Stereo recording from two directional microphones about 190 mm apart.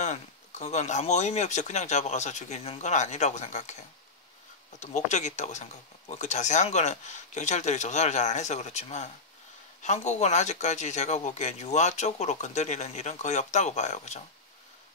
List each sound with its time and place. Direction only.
0.0 s speech: 40° left (ahead or behind)
4.7 s speech: 40° left (ahead or behind)